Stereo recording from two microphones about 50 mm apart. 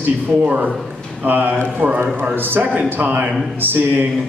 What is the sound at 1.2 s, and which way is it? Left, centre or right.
A man's voice, right.